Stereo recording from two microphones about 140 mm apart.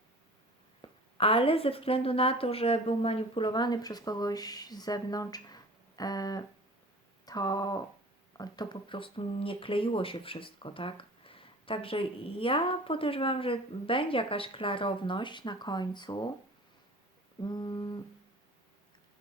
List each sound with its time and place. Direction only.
0.8 s speech: 40° left (ahead or behind)
17.4 s speech: 30° left (ahead or behind)